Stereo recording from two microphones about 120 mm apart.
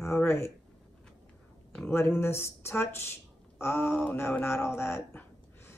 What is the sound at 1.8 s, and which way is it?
Speech, 20° left (ahead or behind).